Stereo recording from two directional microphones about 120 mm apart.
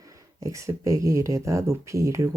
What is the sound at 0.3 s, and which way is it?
Speech, 25° right (ahead or behind).